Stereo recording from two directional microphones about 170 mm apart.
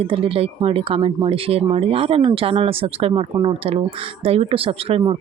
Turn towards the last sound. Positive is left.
turn(degrees=-35)  # may be behind; listen again after turning